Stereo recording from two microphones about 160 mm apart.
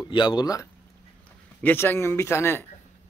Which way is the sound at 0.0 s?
30° left (ahead or behind).